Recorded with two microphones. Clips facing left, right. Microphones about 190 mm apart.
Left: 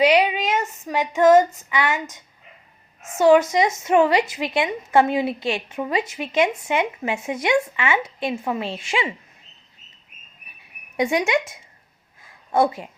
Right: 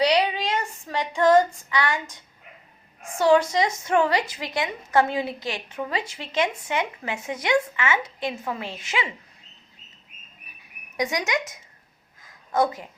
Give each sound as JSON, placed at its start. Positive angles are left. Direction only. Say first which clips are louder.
{"t": 0.0, "sound": "female singing", "louder": "left 4 dB", "side_deg": 15}
{"t": 1.7, "sound": "a woman's voice", "louder": "left 2 dB", "side_deg": 20}
{"t": 10.9, "sound": "a woman's voice", "louder": "left 5 dB", "side_deg": 25}
{"t": 12.2, "sound": "a sound", "louder": "left 3 dB", "side_deg": 25}